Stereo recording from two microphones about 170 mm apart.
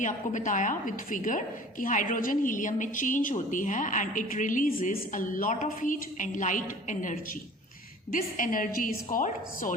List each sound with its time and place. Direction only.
0.0 s a woman's voice: 50° left (ahead or behind)